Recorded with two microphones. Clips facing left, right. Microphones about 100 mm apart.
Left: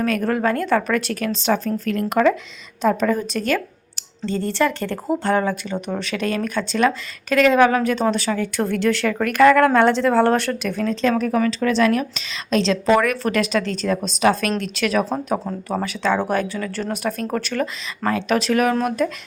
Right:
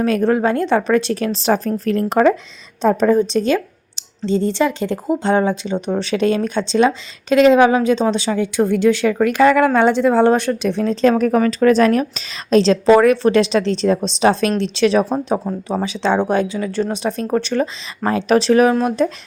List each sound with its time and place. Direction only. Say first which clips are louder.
0.0 s speech: right 4 dB; 25° right (ahead or behind)
11.3 s speech: right 5 dB; 40° right (ahead or behind); by 19.1 s 25° right (ahead or behind)